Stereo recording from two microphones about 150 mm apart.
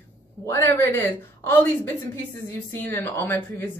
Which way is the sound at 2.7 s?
15° left (ahead or behind).